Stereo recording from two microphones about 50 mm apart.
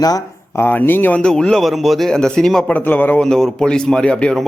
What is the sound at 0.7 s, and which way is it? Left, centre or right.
Speech, left.